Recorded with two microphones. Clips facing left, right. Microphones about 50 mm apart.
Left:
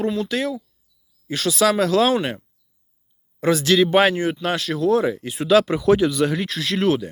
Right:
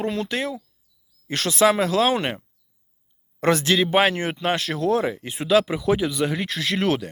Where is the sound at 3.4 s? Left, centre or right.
Right.